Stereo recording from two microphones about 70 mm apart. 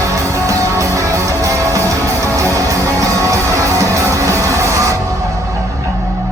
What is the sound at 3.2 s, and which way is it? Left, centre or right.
Music, right.